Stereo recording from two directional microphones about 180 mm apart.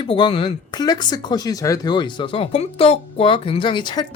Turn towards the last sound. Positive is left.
turn(degrees=25)  # may be behind; listen again after turning